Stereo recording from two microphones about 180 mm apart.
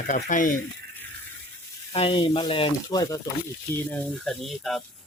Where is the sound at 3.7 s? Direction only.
5° left (ahead or behind).